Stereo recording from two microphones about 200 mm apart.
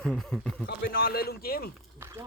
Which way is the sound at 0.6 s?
50° left (ahead or behind).